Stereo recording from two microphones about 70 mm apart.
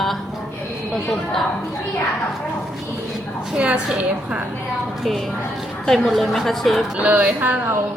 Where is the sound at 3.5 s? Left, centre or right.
Centre.